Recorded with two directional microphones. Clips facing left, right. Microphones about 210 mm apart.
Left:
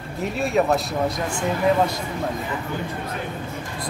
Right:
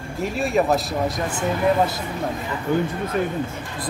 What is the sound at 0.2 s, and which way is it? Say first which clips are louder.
Speech: even; centre (ahead or behind).